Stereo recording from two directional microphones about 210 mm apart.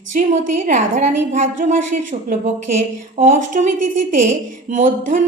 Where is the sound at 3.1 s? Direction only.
35° right (ahead or behind).